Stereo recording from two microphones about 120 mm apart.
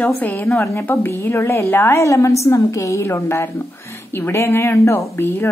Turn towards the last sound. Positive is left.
turn(degrees=20)  # may be behind; listen again after turning